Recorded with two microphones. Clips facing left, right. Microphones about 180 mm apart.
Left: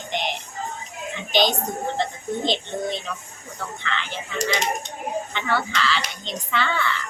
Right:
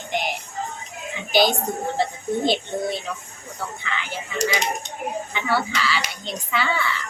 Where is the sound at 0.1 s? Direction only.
10° right (ahead or behind).